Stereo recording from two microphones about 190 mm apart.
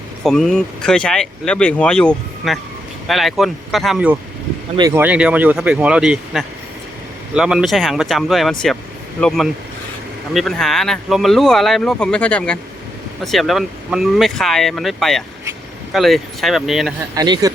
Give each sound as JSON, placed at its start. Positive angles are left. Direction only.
{"t": 0.2, "sound": "speech", "side_deg": 0}
{"t": 17.2, "sound": "speech", "side_deg": -20}